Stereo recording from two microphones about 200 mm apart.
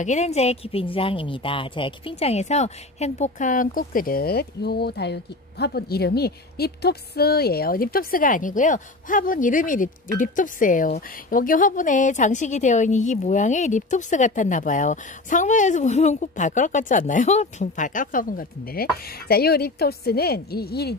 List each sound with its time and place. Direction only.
0.0 s a woman's voice: 35° left (ahead or behind); by 20.9 s 50° left (ahead or behind)